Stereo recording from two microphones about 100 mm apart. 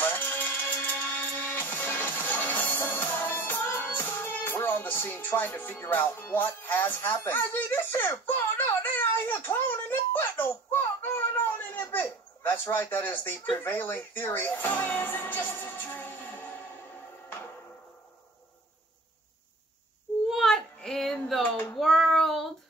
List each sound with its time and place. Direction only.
0.0 s music: 20° left (ahead or behind)
13.6 s speech: 20° left (ahead or behind)
20.2 s child singing: centre (ahead or behind)